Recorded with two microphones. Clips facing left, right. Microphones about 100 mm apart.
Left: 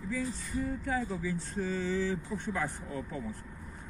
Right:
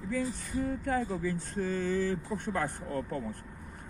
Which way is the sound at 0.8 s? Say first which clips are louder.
Right 2 dB; 55° right (ahead or behind).